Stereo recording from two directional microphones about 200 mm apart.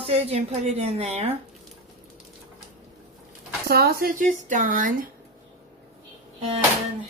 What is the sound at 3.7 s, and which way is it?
Speech, 50° right (ahead or behind).